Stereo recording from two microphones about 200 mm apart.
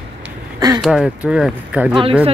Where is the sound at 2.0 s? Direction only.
30° right (ahead or behind).